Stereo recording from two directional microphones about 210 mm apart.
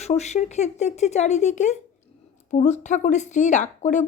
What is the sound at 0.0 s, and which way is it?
Speech, 30° left (ahead or behind).